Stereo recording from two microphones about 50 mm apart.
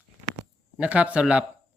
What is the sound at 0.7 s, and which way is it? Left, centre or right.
Speech, right.